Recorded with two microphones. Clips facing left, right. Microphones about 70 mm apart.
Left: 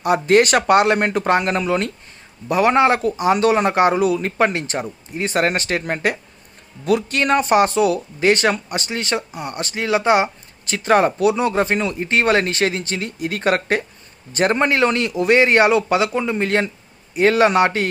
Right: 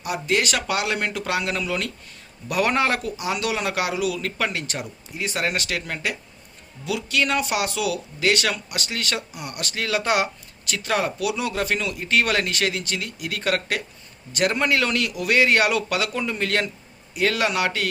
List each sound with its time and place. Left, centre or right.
0.0 s a man's voice: left